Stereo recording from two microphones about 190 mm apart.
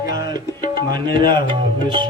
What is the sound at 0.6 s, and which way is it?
Music, 50° left (ahead or behind).